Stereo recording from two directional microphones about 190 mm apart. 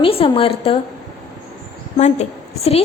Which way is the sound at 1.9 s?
35° left (ahead or behind).